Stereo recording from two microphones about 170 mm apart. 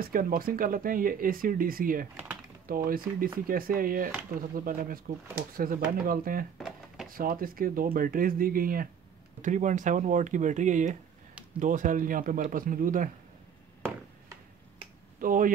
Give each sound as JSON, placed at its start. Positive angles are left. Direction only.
{"t": 0.0, "sound": "speech", "side_deg": -55}
{"t": 15.1, "sound": "speech", "side_deg": -55}